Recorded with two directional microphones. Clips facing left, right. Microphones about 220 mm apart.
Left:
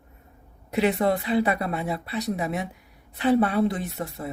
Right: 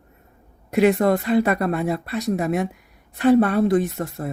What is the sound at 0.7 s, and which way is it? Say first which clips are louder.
Speech: right 5 dB; 45° right (ahead or behind).